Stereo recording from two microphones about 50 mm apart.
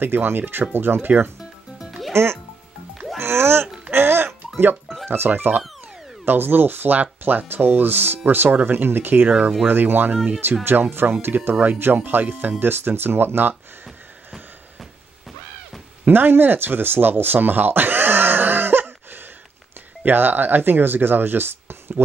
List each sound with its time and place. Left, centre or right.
0.0 s speech: right
1.4 s music: centre
3.2 s speech: right
3.9 s music: right
5.0 s speech: right
16.1 s speech: right